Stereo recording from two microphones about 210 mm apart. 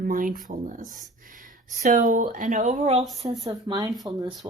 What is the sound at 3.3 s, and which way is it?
Speech, 15° right (ahead or behind).